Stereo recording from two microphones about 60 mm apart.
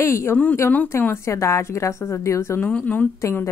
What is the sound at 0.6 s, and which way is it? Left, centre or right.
A woman's voice, left.